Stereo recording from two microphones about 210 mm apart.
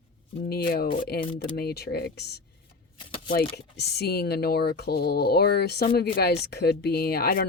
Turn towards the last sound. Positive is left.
turn(degrees=45)  # may be behind; listen again after turning